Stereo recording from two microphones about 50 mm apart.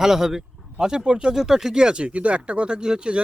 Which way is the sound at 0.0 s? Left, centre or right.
Centre.